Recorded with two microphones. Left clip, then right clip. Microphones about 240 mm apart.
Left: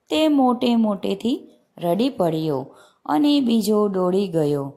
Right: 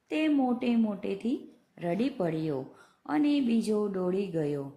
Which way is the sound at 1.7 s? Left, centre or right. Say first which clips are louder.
Left 10 dB; centre.